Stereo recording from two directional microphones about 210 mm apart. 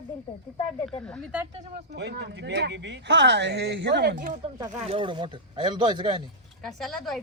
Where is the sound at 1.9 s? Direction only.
55° right (ahead or behind).